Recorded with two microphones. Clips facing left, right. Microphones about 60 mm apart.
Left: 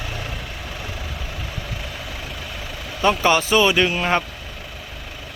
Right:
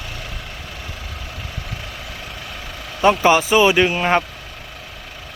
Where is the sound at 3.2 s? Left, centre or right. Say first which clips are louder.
Right 2 dB; centre.